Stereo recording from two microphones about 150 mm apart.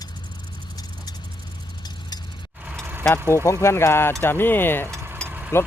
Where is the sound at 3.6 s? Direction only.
15° left (ahead or behind).